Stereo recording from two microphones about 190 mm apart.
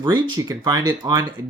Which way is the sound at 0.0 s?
25° right (ahead or behind).